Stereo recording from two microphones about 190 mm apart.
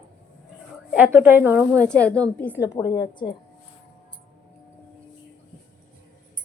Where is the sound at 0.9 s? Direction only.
5° right (ahead or behind).